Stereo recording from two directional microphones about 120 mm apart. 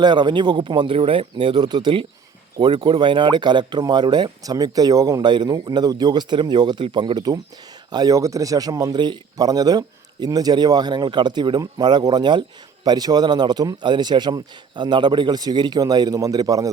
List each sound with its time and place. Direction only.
0.0 s speech: 40° right (ahead or behind)
0.9 s speech: 55° right (ahead or behind); by 16.6 s 30° right (ahead or behind)